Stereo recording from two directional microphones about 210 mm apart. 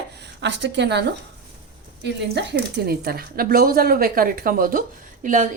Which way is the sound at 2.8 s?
50° right (ahead or behind).